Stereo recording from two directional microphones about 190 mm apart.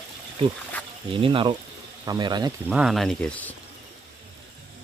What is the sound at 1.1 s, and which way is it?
Speech, 25° right (ahead or behind).